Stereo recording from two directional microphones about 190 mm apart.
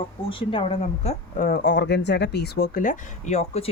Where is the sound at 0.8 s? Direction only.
45° left (ahead or behind).